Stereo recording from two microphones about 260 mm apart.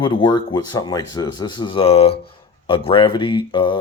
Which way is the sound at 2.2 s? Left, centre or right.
Left.